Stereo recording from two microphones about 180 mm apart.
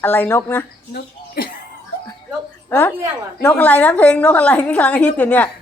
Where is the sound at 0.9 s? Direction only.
60° left (ahead or behind).